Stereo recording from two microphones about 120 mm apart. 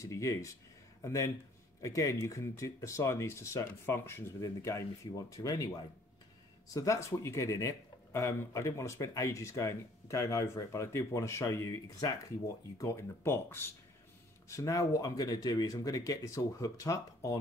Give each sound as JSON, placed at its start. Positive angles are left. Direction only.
{"t": 0.0, "sound": "speech", "side_deg": 25}
{"t": 6.7, "sound": "speech", "side_deg": 30}